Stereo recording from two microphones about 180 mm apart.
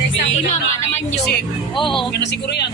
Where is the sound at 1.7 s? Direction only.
25° left (ahead or behind).